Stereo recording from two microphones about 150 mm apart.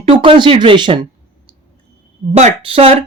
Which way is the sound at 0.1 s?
35° right (ahead or behind).